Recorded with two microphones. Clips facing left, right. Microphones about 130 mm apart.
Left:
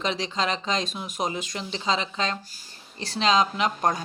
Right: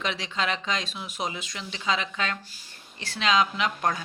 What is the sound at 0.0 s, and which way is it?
Speech, 35° left (ahead or behind).